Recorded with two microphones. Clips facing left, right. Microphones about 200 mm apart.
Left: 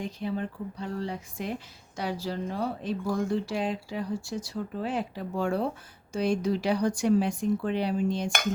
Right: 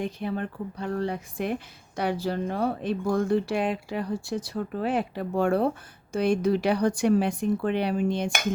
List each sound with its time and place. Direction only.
0.0 s a woman's voice: 60° right (ahead or behind)